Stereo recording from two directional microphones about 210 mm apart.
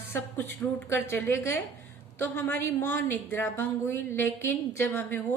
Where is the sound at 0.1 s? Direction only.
10° left (ahead or behind).